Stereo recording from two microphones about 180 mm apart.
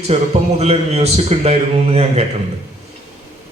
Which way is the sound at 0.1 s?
35° right (ahead or behind).